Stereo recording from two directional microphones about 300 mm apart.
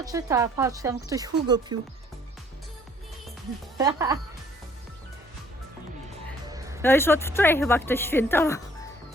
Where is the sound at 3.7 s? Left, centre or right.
Centre.